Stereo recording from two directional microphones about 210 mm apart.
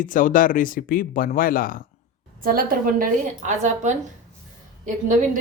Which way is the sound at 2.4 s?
45° right (ahead or behind).